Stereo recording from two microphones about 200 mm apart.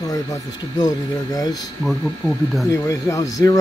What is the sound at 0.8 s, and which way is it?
Speech, 20° left (ahead or behind).